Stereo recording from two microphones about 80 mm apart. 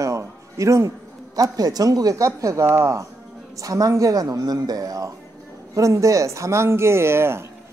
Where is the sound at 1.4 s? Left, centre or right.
Right.